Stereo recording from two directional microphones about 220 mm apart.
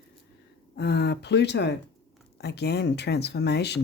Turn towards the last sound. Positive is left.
turn(degrees=50)  # may be behind; listen again after turning